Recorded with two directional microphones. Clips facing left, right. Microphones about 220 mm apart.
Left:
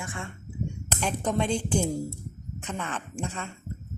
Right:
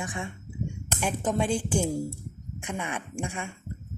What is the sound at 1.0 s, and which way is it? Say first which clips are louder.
A woman's voice: even; 5° right (ahead or behind).